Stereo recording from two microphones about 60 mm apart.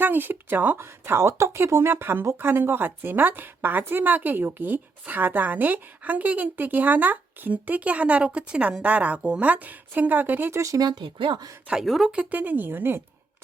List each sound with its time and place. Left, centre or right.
0.0 s a woman's voice: right
10.5 s speech: right
11.7 s speech: centre
12.1 s speech: right